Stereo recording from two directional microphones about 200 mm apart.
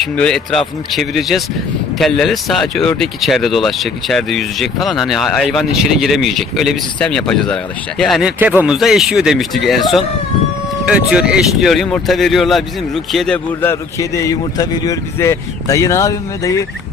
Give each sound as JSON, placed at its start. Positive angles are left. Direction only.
{"t": 0.0, "sound": "a man's voice", "side_deg": 5}